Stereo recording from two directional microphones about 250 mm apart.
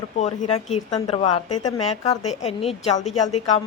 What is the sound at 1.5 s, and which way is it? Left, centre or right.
Speech, left.